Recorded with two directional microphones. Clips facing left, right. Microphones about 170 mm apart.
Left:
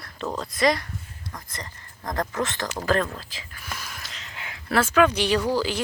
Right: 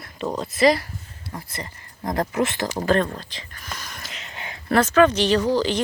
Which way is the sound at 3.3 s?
5° left (ahead or behind).